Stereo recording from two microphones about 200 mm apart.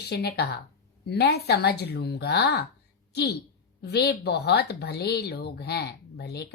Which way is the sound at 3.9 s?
55° left (ahead or behind).